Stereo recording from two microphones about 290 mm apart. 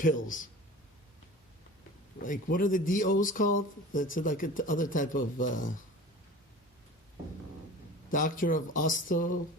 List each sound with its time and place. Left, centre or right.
0.0 s speech: left
2.1 s speech: left
8.1 s speech: left